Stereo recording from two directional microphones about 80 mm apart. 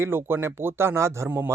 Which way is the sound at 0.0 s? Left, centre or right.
Right.